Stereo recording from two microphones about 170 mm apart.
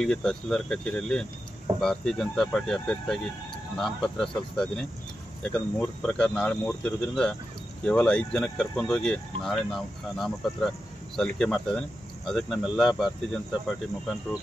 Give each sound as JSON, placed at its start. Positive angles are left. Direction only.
{"t": 0.0, "sound": "speech", "side_deg": 5}